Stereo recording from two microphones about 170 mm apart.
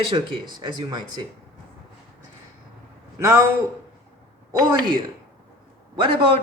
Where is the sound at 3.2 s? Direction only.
15° right (ahead or behind).